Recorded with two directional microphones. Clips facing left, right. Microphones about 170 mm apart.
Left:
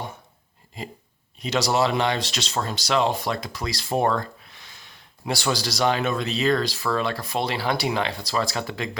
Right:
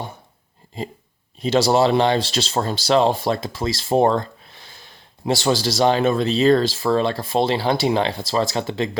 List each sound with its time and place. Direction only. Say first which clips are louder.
0.8 s speech: right 6 dB; 25° right (ahead or behind)